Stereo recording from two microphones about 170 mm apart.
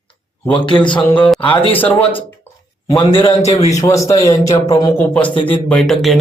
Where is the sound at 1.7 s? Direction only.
10° left (ahead or behind).